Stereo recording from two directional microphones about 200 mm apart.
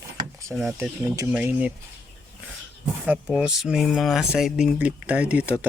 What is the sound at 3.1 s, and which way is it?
Speech, 5° right (ahead or behind).